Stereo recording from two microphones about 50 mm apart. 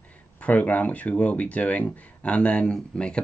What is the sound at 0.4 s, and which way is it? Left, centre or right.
Speech, left.